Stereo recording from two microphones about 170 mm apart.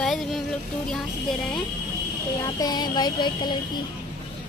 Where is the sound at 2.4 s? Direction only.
25° left (ahead or behind).